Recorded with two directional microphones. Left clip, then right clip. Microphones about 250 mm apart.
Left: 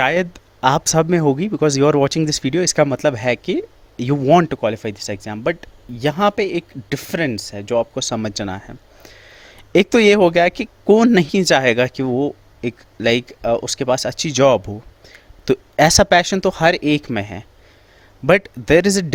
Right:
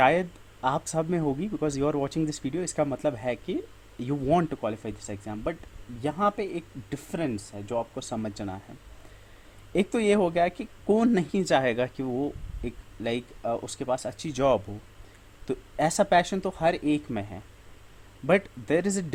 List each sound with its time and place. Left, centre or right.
0.0 s speech: left
9.7 s speech: left